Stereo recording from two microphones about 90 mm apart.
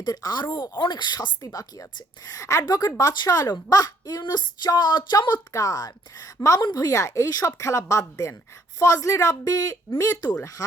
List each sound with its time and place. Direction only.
0.0 s speech: 45° left (ahead or behind)
1.5 s a woman's voice: 35° left (ahead or behind)
4.2 s a woman's voice: 55° left (ahead or behind)
5.5 s a woman's voice: 40° left (ahead or behind)
6.6 s speech: 55° left (ahead or behind)
6.8 s a woman's voice: 35° left (ahead or behind)